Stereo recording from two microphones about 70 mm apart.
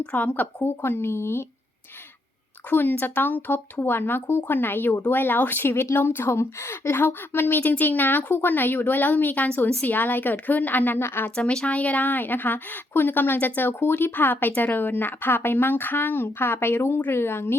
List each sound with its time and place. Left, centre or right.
0.0 s speech: centre; by 1.5 s left
2.6 s speech: left
11.3 s speech: centre; by 17.6 s left